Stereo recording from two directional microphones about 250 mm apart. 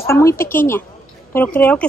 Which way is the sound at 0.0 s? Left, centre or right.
Centre.